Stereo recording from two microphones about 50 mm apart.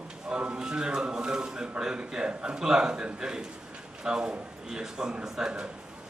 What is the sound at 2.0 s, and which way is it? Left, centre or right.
A man's voice, centre.